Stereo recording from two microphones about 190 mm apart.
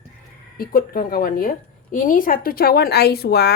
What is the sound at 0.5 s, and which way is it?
A woman's voice, 50° left (ahead or behind).